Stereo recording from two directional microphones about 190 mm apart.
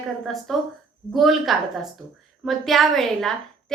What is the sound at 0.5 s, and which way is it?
A woman's voice, centre (ahead or behind).